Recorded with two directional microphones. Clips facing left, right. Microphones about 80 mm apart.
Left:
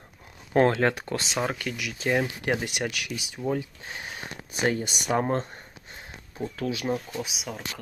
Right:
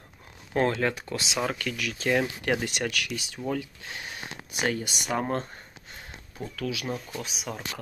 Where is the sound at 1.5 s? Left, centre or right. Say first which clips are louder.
Even; left.